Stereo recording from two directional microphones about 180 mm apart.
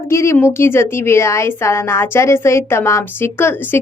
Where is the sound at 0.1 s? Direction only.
15° left (ahead or behind).